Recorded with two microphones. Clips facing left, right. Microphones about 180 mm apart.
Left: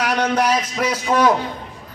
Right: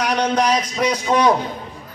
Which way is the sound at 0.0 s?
5° left (ahead or behind).